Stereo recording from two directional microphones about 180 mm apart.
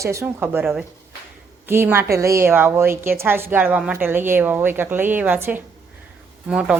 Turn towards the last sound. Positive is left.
turn(degrees=-5)  # may be behind; listen again after turning